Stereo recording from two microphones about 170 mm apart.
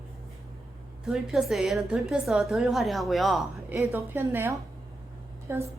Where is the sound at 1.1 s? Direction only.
Centre (ahead or behind).